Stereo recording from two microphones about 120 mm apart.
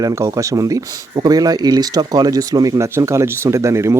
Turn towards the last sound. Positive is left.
turn(degrees=-25)  # may be behind; listen again after turning